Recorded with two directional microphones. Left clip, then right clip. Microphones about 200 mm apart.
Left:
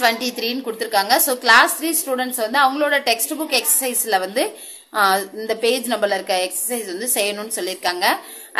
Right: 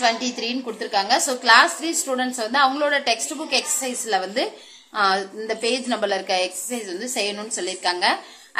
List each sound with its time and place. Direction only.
0.0 s a woman's voice: 20° left (ahead or behind)